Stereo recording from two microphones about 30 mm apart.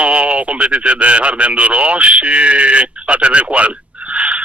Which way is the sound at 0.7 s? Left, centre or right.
Right.